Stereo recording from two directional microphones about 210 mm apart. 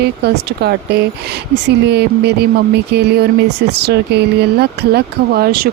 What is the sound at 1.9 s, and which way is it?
Speech, 50° right (ahead or behind).